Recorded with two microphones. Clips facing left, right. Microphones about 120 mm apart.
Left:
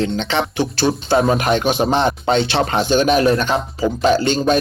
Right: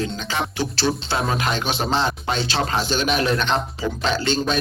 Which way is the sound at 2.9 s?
45° left (ahead or behind).